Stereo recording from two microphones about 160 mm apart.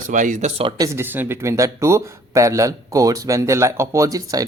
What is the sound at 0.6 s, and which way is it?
Speech, 35° right (ahead or behind).